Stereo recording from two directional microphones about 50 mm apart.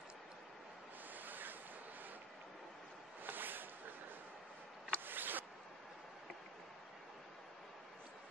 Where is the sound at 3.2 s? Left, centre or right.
Right.